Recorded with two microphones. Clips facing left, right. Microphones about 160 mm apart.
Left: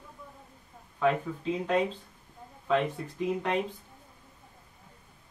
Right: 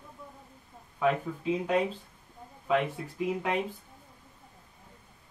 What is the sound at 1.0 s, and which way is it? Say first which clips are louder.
Speech: left 1 dB; 5° right (ahead or behind).